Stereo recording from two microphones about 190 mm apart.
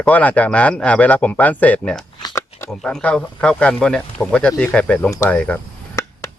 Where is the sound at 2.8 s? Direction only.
5° left (ahead or behind).